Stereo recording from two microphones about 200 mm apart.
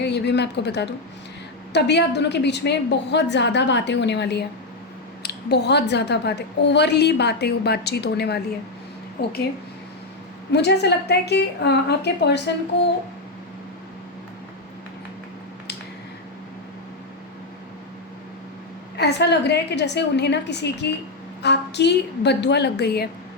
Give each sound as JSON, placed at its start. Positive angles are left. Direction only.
{"t": 0.0, "sound": "a woman's voice", "side_deg": 60}
{"t": 10.5, "sound": "a woman's voice", "side_deg": 55}
{"t": 18.9, "sound": "a woman's voice", "side_deg": 55}